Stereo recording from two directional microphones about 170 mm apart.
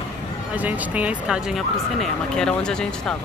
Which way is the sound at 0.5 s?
10° right (ahead or behind).